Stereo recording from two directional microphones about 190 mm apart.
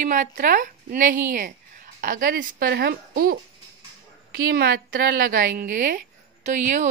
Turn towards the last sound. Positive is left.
turn(degrees=-40)  # may be behind; listen again after turning